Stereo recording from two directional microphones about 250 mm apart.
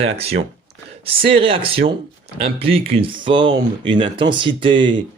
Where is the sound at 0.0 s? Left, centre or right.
Right.